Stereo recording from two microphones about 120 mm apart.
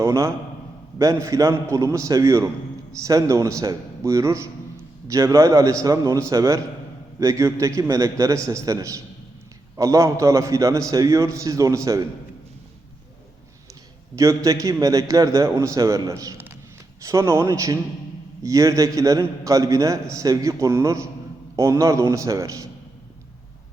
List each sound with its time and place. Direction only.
0.0 s a man's voice: 25° right (ahead or behind)
14.2 s a man's voice: 25° right (ahead or behind)